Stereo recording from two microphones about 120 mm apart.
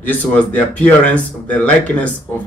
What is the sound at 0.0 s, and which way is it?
Speech, 15° left (ahead or behind).